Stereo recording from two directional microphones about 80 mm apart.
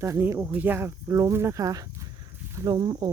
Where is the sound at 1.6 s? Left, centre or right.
Right.